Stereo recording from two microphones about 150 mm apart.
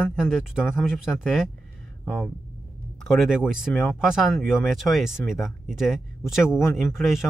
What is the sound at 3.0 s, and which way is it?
Speech, centre (ahead or behind).